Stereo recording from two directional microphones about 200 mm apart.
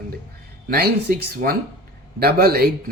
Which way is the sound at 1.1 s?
45° right (ahead or behind).